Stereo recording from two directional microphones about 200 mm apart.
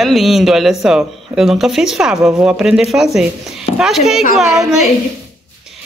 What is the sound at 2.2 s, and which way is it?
Speech, 15° right (ahead or behind).